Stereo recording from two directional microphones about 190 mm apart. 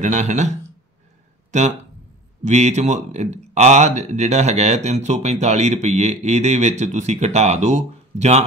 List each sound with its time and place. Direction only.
0.0 s speech: 40° right (ahead or behind)
1.5 s speech: 40° right (ahead or behind)